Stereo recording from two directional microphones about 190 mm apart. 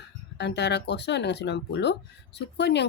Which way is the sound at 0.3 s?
65° left (ahead or behind).